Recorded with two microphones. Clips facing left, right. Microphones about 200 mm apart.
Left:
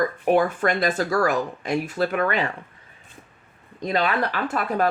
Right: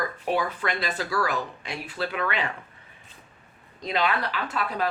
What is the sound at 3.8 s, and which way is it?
Speech, 50° left (ahead or behind).